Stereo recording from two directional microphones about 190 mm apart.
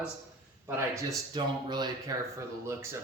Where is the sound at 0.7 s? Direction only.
15° right (ahead or behind).